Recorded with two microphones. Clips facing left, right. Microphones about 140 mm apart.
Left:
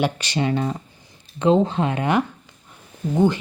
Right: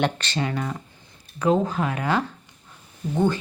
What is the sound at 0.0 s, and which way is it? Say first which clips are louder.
Speech: left 2 dB; 15° left (ahead or behind).